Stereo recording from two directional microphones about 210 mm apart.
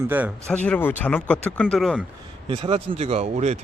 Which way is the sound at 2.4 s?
25° right (ahead or behind).